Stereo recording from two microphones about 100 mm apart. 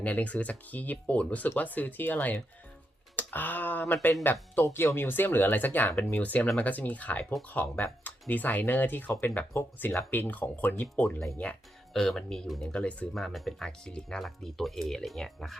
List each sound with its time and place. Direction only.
0.0 s speech: 15° left (ahead or behind)
11.9 s speech: 5° left (ahead or behind)